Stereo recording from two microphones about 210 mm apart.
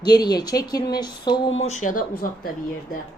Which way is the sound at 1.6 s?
35° left (ahead or behind).